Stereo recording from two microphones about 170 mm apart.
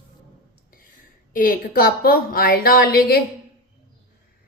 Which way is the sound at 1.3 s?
60° left (ahead or behind).